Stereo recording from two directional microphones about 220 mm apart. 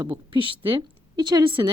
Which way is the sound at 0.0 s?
20° right (ahead or behind).